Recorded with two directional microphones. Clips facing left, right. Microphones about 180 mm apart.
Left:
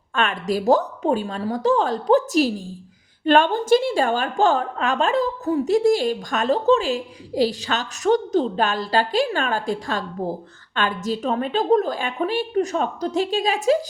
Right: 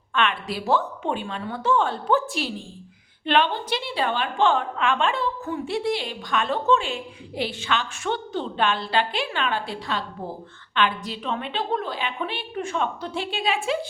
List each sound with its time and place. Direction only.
0.1 s a woman's voice: 40° left (ahead or behind)